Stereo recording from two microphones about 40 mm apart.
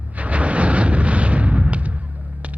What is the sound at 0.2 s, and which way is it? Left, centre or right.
Artillery fire, right.